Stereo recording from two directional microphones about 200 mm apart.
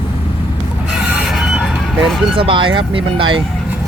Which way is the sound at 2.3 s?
25° right (ahead or behind).